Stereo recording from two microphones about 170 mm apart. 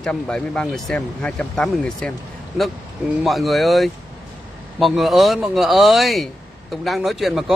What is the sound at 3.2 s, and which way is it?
Speech, centre (ahead or behind).